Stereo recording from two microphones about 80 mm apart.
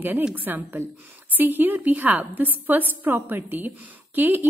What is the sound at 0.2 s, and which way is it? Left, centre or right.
A woman's voice, right.